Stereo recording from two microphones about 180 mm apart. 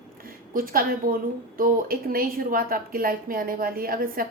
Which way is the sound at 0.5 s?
50° right (ahead or behind).